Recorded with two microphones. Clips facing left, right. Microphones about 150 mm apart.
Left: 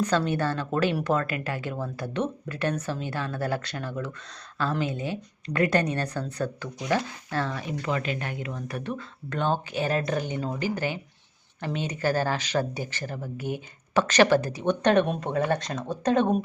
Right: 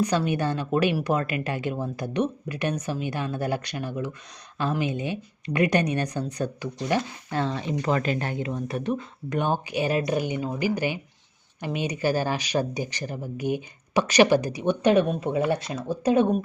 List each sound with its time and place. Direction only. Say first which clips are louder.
0.0 s speech: right 1 dB; 15° right (ahead or behind)
7.8 s speech: right 4 dB; 40° right (ahead or behind); by 16.4 s 5° right (ahead or behind)